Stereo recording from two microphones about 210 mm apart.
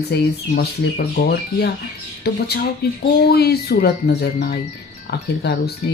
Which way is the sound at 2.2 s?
50° left (ahead or behind).